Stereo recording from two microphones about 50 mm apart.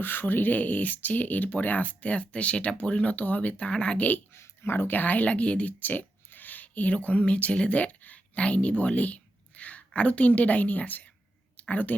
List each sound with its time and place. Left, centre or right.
0.0 s speech: left
4.3 s speech: left
5.8 s speech: left